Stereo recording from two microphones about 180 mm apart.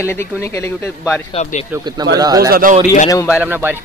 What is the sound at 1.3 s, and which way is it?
Speech, 40° left (ahead or behind).